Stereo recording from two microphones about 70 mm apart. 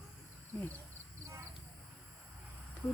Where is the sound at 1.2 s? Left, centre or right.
Right.